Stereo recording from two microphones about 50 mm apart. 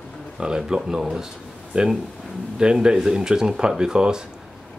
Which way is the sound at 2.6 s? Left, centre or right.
Centre.